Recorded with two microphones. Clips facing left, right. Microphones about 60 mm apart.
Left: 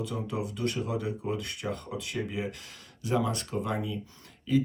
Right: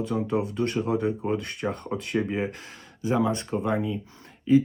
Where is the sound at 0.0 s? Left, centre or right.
Right.